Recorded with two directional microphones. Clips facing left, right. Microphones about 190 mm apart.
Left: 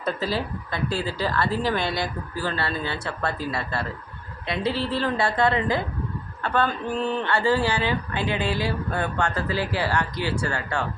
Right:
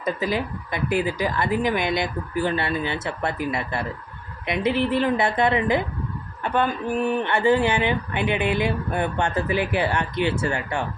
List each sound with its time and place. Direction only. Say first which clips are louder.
0.0 s speech: right 2 dB; 15° right (ahead or behind)